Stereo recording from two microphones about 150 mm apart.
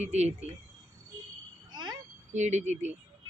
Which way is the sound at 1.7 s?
30° right (ahead or behind).